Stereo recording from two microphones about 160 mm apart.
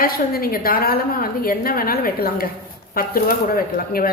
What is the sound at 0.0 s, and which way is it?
A woman's voice, 65° left (ahead or behind).